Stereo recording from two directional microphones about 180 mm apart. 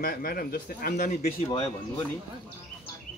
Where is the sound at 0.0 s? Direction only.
55° left (ahead or behind).